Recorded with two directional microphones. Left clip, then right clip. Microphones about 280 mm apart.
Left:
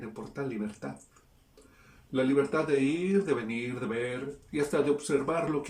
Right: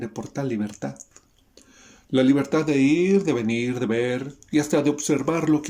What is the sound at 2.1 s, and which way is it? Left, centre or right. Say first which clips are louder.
Speech: right 7 dB; right.